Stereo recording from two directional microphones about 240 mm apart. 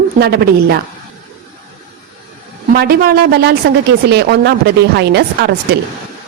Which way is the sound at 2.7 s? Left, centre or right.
Right.